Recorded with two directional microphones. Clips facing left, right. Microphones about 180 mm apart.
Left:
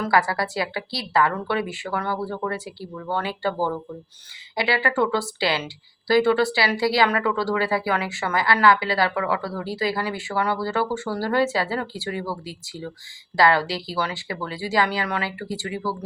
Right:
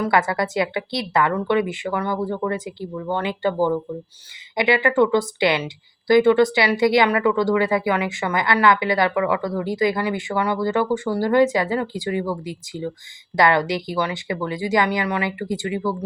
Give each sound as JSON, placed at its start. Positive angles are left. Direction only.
{"t": 0.0, "sound": "a woman's voice", "side_deg": -20}